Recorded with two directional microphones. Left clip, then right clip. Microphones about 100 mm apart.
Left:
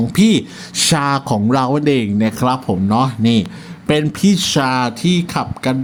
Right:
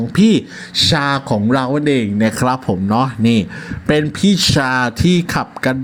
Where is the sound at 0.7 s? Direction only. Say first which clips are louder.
Right 1 dB; 15° left (ahead or behind).